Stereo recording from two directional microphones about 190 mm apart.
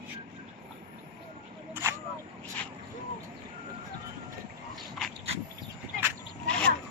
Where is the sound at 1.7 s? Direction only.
15° right (ahead or behind).